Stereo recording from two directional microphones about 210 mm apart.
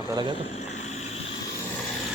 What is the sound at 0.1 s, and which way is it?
Speech, 20° right (ahead or behind).